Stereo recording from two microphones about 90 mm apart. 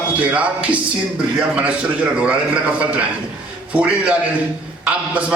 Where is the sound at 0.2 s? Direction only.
15° right (ahead or behind).